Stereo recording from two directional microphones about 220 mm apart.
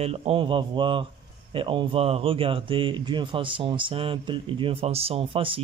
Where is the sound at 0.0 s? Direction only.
25° right (ahead or behind).